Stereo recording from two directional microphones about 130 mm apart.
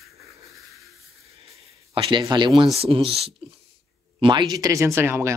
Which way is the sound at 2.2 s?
35° right (ahead or behind).